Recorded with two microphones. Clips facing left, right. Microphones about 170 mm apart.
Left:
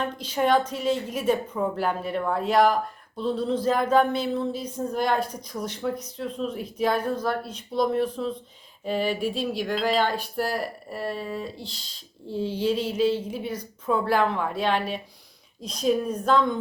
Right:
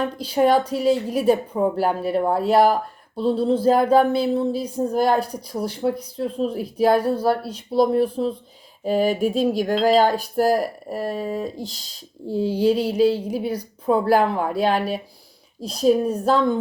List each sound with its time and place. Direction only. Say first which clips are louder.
0.0 s speech: right 6 dB; 35° right (ahead or behind)
8.8 s a sound: right 6 dB; 40° right (ahead or behind)
9.8 s speech: right 8 dB; 40° right (ahead or behind)